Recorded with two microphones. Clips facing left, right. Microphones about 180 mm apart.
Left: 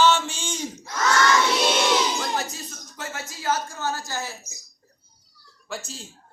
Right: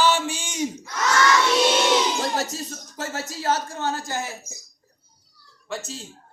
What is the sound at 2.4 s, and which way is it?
Speech, 40° right (ahead or behind).